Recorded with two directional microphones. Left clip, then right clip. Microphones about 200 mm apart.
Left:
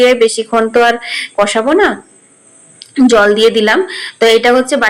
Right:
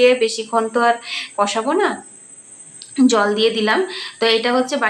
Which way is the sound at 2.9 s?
25° left (ahead or behind).